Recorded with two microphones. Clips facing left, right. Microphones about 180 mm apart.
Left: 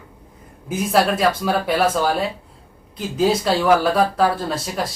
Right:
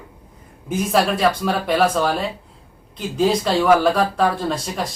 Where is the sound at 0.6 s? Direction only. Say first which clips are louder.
Even; centre (ahead or behind).